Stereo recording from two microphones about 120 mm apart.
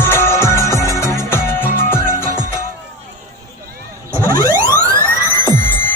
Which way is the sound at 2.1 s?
90° right.